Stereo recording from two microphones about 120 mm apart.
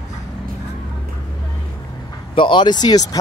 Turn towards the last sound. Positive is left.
turn(degrees=35)  # may be behind; listen again after turning